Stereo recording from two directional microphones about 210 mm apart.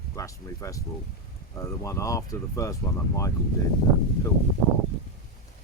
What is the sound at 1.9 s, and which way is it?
Speech, 15° left (ahead or behind).